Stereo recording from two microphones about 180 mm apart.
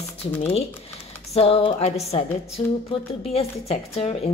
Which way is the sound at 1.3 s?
30° left (ahead or behind).